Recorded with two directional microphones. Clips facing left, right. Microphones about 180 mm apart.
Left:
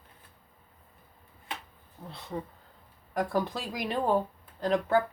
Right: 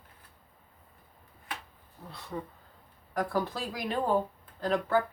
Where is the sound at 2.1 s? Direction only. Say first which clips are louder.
Left 1 dB; 20° left (ahead or behind).